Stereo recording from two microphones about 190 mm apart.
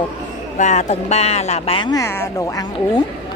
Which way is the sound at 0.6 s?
40° left (ahead or behind).